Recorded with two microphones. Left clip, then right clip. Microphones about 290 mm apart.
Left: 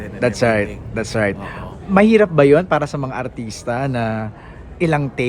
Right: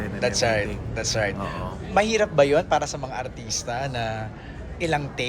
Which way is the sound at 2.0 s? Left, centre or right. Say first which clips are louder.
Left 7 dB; left.